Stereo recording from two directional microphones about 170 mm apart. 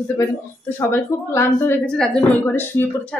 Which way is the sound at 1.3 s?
15° left (ahead or behind).